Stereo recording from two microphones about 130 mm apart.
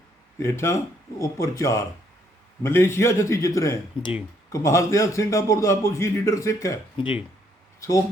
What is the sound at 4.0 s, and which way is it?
Speech, 40° left (ahead or behind).